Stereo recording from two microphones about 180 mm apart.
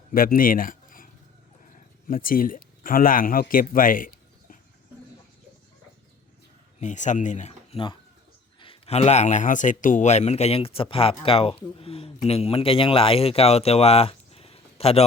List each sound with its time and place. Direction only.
0.1 s speech: 50° left (ahead or behind)
6.7 s speech: 40° left (ahead or behind)